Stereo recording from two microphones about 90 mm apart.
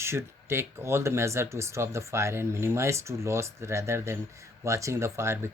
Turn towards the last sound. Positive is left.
turn(degrees=-30)  # may be behind; listen again after turning